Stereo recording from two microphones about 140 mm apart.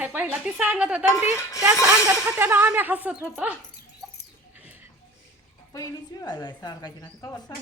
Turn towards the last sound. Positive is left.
turn(degrees=30)  # may be behind; listen again after turning